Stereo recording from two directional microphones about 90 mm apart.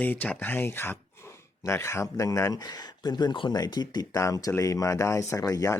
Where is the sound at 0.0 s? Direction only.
20° left (ahead or behind); by 3.5 s 60° left (ahead or behind).